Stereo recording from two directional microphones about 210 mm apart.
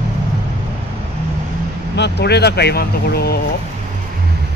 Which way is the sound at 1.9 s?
55° left (ahead or behind).